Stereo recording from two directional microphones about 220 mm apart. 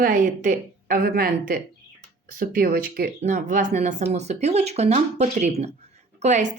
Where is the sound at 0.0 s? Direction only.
35° right (ahead or behind).